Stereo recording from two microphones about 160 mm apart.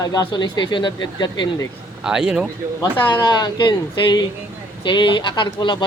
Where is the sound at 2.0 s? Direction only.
5° right (ahead or behind).